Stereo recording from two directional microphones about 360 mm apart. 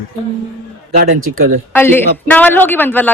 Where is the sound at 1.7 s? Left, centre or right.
Centre.